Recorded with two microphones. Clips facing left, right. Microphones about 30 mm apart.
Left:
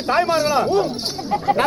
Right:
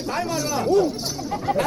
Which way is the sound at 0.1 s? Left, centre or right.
Left.